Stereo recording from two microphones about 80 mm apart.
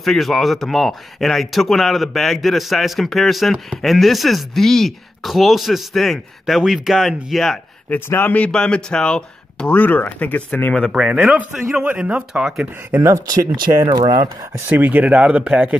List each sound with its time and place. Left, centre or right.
0.0 s speech: centre
7.9 s speech: left
8.5 s speech: centre
11.0 s a man's voice: centre
13.0 s speech: right
14.0 s speech: right
14.7 s a man's voice: right